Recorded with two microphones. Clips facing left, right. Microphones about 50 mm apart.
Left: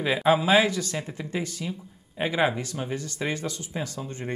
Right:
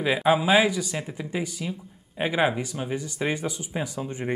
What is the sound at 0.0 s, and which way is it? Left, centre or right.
Speech, centre.